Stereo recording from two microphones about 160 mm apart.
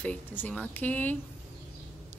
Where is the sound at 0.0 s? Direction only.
10° left (ahead or behind).